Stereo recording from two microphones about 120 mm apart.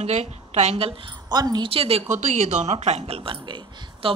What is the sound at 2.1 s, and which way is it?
Speech, 80° right.